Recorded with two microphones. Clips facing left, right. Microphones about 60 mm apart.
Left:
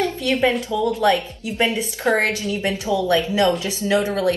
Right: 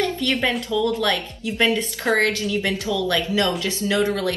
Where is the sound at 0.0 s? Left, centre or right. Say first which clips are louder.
Left 3 dB; left.